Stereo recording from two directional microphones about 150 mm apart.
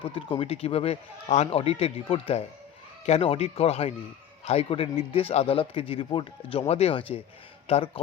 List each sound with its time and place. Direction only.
0.0 s a man's voice: 40° left (ahead or behind)